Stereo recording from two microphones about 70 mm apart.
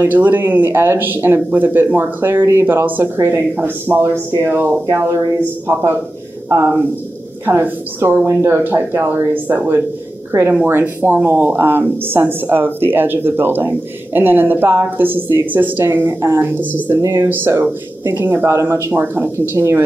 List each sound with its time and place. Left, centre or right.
0.0 s speech: right
7.4 s speech: right
10.6 s speech: right